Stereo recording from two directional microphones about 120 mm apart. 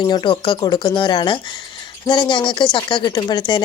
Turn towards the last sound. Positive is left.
turn(degrees=40)  # may be behind; listen again after turning